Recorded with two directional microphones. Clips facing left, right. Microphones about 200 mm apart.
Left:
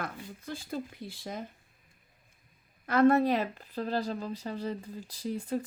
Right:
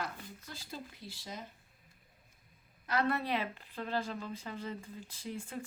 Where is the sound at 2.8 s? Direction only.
50° left (ahead or behind).